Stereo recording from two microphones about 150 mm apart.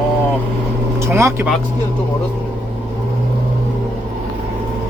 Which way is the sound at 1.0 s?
20° right (ahead or behind).